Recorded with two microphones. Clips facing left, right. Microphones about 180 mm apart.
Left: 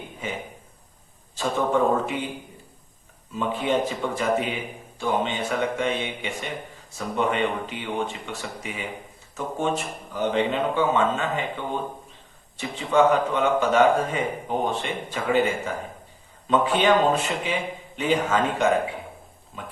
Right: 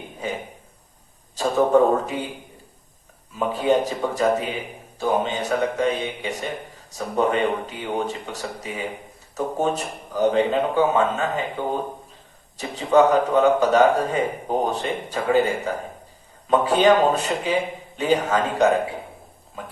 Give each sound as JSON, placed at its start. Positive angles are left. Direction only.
{"t": 1.4, "sound": "speech", "side_deg": -40}
{"t": 3.5, "sound": "speech", "side_deg": -40}